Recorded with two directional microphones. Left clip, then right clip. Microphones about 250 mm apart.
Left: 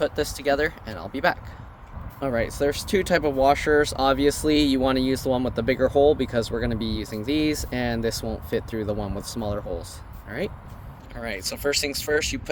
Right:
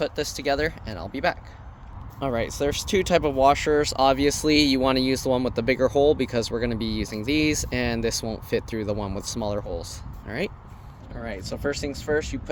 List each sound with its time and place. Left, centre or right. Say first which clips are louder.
0.0 s speech: left 2 dB; right
2.1 s speech: left 1 dB; right
11.1 s speech: left 3 dB; left